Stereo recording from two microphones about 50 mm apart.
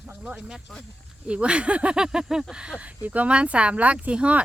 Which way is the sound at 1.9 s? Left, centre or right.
Centre.